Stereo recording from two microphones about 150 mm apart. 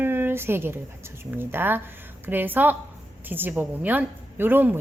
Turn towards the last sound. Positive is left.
turn(degrees=-15)  # may be behind; listen again after turning